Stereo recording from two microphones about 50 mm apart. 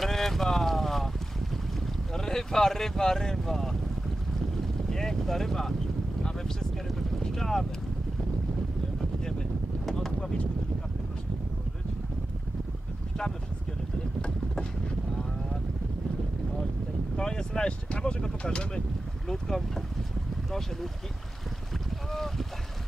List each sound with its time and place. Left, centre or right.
0.0 s boat: centre
2.1 s speech: centre
4.6 s boat: centre
9.8 s a sound: centre
17.2 s speech: centre
22.1 s boat: centre